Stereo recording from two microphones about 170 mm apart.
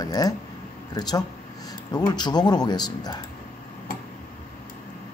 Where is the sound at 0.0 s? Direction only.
20° left (ahead or behind).